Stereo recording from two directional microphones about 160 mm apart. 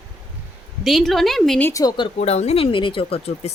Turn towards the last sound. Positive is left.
turn(degrees=40)  # may be behind; listen again after turning